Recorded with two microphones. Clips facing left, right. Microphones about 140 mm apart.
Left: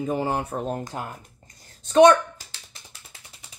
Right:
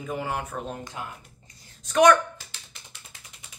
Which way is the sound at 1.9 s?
25° left (ahead or behind).